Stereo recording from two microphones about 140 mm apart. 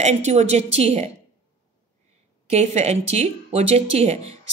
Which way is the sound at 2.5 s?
50° right (ahead or behind).